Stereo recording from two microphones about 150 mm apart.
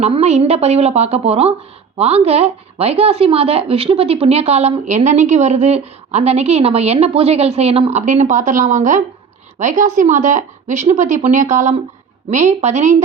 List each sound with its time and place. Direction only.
0.0 s a woman's voice: 45° right (ahead or behind)